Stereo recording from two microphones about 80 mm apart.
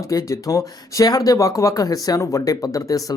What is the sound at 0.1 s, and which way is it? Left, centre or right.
Speech, left.